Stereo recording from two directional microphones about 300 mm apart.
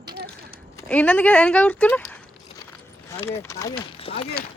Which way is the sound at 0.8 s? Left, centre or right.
Centre.